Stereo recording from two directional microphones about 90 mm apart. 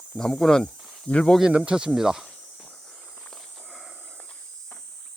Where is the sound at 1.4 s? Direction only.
10° right (ahead or behind).